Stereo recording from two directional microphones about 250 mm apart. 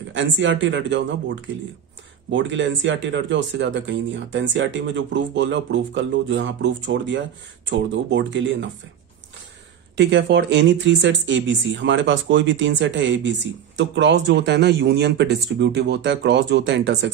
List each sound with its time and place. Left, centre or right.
0.1 s speech: right
9.9 s speech: right